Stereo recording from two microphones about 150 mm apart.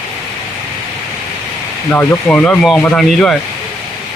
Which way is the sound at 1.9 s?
10° left (ahead or behind).